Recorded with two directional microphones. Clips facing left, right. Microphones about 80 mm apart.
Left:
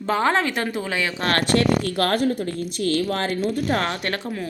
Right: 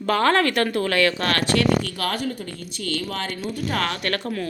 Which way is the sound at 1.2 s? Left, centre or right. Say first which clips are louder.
Left 1 dB; left.